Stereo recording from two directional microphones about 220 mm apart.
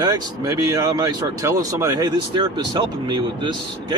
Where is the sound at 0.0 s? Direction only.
15° right (ahead or behind).